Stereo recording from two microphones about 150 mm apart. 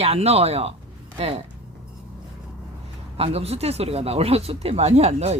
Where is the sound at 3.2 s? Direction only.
40° right (ahead or behind).